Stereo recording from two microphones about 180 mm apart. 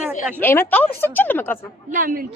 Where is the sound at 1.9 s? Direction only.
50° right (ahead or behind).